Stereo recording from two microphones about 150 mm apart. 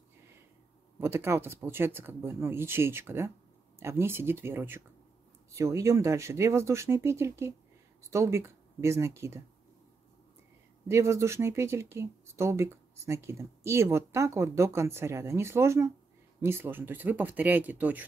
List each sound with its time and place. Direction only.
0.9 s speech: 15° right (ahead or behind)
10.9 s speech: 20° right (ahead or behind)